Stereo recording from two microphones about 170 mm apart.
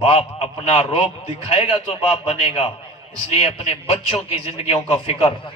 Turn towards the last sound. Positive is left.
turn(degrees=35)  # may be behind; listen again after turning